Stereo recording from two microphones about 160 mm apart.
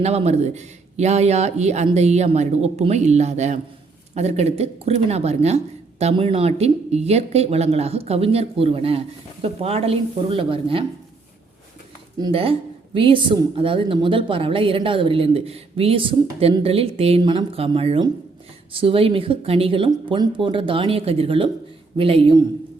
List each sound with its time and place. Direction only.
0.0 s a woman's voice: 40° right (ahead or behind)
12.2 s a woman's voice: 35° right (ahead or behind)